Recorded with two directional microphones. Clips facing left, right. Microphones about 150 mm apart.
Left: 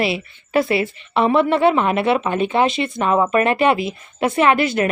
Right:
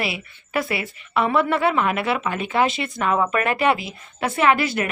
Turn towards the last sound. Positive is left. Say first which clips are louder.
# left 3 dB
turn(degrees=25)  # may be behind; listen again after turning